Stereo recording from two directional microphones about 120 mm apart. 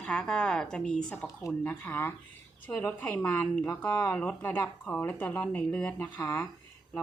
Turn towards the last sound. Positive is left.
turn(degrees=20)  # may be behind; listen again after turning